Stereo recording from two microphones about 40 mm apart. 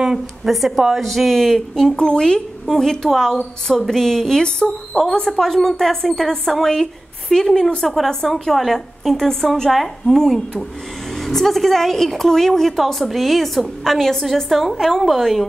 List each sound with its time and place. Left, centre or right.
0.5 s a woman's voice: centre
2.0 s a woman's voice: centre
9.7 s a woman's voice: centre
10.1 s a woman's voice: centre